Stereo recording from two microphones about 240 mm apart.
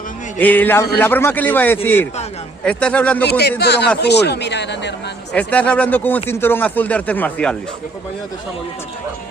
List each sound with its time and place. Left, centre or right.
0.3 s speech: centre
3.2 s speech: left
5.3 s speech: centre